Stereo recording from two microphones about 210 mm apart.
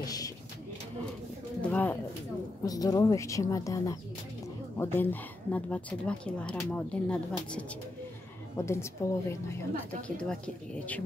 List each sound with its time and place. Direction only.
0.0 s speech: 15° left (ahead or behind)
1.6 s bird: 5° left (ahead or behind)
2.6 s a woman's voice: 15° left (ahead or behind)